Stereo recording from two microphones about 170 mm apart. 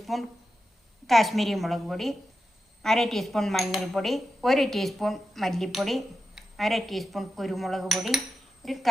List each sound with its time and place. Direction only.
0.0 s speech: centre (ahead or behind)